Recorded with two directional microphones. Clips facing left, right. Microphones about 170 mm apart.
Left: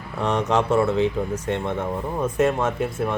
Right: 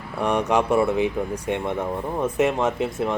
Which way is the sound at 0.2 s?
10° right (ahead or behind).